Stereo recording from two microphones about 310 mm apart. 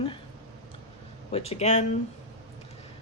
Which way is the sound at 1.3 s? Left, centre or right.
Centre.